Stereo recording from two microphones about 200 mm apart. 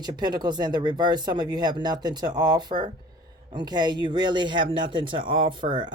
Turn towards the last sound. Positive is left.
turn(degrees=-25)  # may be behind; listen again after turning